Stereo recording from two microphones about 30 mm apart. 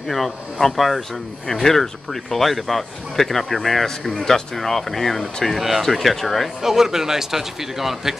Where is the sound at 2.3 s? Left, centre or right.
Centre.